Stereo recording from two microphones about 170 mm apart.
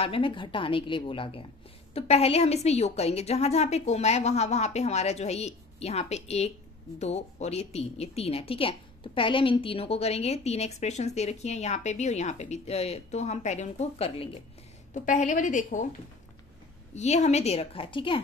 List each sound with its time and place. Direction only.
0.0 s a woman's voice: 30° left (ahead or behind)
15.0 s a woman's voice: 45° left (ahead or behind)
16.9 s a woman's voice: 40° left (ahead or behind)